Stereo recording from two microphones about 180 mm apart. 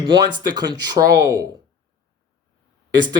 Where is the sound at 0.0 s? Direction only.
25° right (ahead or behind).